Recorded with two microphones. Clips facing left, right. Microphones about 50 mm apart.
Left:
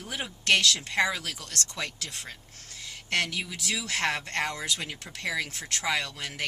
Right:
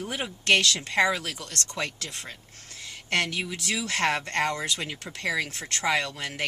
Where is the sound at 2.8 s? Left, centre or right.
Centre.